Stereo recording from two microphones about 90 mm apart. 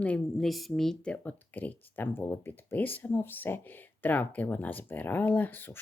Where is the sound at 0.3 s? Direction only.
Centre (ahead or behind).